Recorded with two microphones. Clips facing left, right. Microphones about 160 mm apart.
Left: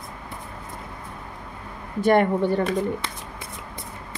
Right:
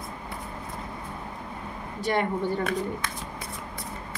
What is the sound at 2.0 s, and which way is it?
Speech, 55° left (ahead or behind).